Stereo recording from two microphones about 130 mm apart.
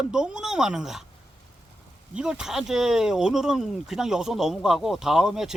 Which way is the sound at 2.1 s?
5° right (ahead or behind).